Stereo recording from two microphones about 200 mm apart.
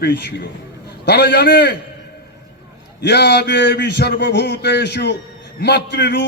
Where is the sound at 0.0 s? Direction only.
60° left (ahead or behind).